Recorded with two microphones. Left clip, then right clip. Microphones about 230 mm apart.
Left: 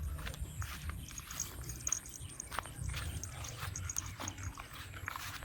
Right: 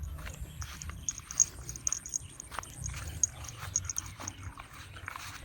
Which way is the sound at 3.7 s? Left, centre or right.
Centre.